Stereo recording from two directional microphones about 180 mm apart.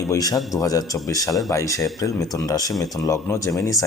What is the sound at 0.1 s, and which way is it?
Speech, 20° left (ahead or behind).